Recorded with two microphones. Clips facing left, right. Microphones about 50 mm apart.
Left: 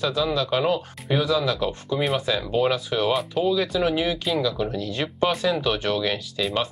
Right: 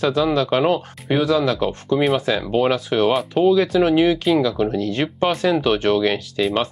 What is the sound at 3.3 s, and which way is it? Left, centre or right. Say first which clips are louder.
Speech: right 7 dB; right.